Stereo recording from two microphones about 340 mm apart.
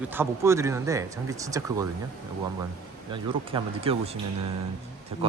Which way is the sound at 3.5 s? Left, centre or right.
Centre.